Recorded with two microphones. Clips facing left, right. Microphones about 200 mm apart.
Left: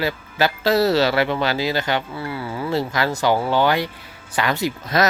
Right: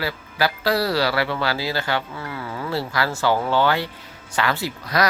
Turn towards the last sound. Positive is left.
turn(degrees=25)  # may be behind; listen again after turning